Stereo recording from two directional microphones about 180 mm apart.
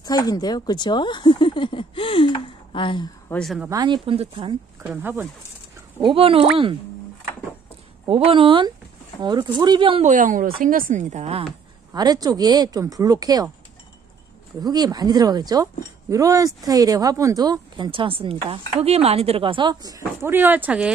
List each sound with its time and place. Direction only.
0.0 s a woman's voice: 20° left (ahead or behind)
3.3 s a woman's voice: 5° left (ahead or behind)
3.6 s a woman's voice: 20° right (ahead or behind)
4.8 s speech: 10° right (ahead or behind)
5.9 s a woman's voice: 30° right (ahead or behind)
8.1 s a woman's voice: 30° right (ahead or behind)
10.0 s speech: 45° right (ahead or behind)
11.9 s a woman's voice: 20° right (ahead or behind)
14.6 s a woman's voice: 20° right (ahead or behind)